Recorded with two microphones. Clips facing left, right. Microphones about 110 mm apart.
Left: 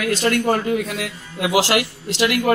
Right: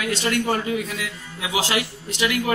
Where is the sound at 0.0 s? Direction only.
55° left (ahead or behind); by 2.4 s 75° left (ahead or behind).